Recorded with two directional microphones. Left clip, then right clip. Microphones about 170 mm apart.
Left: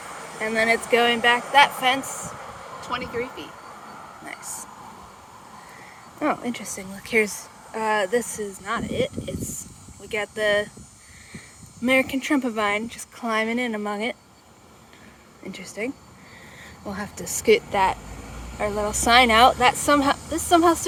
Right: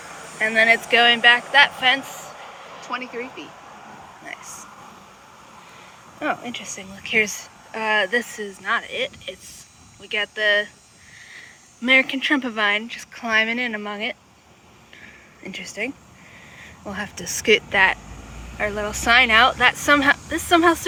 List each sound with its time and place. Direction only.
0.3 s speech: 10° left (ahead or behind)
4.3 s whispering: 25° left (ahead or behind)
6.1 s speech: 35° left (ahead or behind)
15.4 s speech: 10° left (ahead or behind)
18.9 s speech: 20° left (ahead or behind)